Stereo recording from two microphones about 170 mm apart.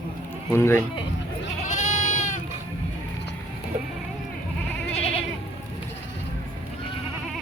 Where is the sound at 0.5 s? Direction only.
15° left (ahead or behind).